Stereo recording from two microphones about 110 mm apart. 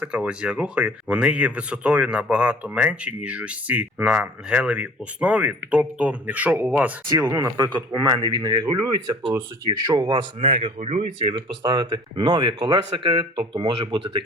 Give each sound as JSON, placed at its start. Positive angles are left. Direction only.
{"t": 0.0, "sound": "speech", "side_deg": -10}
{"t": 7.5, "sound": "speech", "side_deg": -40}
{"t": 10.4, "sound": "a man's voice", "side_deg": -75}
{"t": 11.2, "sound": "speech", "side_deg": -45}